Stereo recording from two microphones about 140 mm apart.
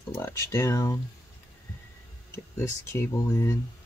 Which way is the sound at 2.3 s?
20° left (ahead or behind).